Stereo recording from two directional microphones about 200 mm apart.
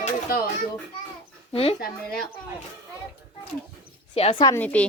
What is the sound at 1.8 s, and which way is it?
Speech, 50° left (ahead or behind).